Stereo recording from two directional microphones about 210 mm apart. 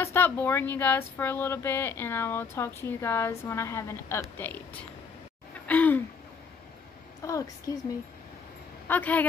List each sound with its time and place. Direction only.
0.0 s speech: 10° left (ahead or behind)
5.7 s gasp: 10° left (ahead or behind)
7.2 s speech: 15° left (ahead or behind)
8.8 s a woman's voice: 10° left (ahead or behind)